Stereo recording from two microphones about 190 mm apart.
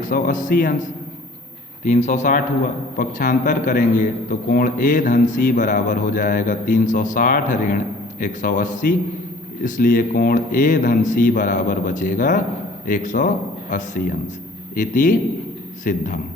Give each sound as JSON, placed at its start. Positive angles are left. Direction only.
{"t": 0.0, "sound": "a man's voice", "side_deg": 45}